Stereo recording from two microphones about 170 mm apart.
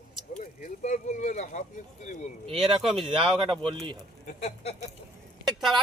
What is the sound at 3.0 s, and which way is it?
Speech, 30° right (ahead or behind).